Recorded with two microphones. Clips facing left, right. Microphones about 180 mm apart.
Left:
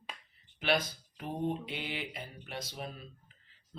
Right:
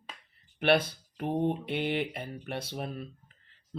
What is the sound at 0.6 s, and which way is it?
Speech, 60° right (ahead or behind).